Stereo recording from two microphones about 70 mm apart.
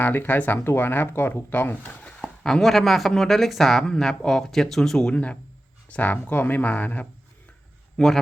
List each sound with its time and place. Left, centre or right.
0.0 s speech: left
2.2 s speech: centre; by 7.1 s left
7.9 s speech: centre